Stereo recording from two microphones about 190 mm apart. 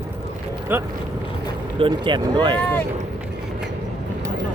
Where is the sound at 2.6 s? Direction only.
10° left (ahead or behind).